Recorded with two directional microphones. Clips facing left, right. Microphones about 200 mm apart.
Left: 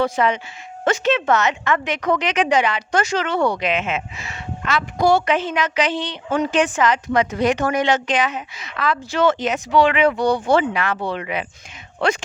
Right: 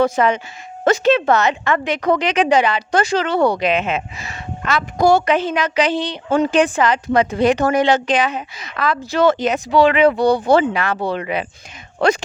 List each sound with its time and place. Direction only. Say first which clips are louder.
0.0 s a woman's voice: right 3 dB; 45° right (ahead or behind)